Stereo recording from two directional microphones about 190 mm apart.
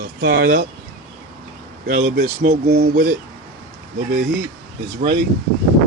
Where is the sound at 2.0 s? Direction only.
45° right (ahead or behind).